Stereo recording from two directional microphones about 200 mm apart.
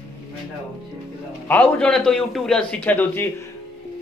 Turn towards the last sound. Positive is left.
turn(degrees=10)  # may be behind; listen again after turning